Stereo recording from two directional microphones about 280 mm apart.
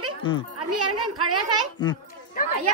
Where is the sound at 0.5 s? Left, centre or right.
Right.